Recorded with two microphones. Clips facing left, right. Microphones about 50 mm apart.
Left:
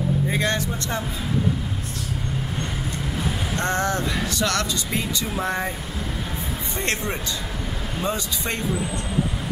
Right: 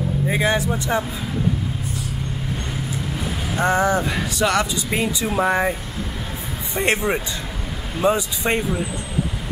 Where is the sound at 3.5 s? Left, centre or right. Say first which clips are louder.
Right 7 dB; centre.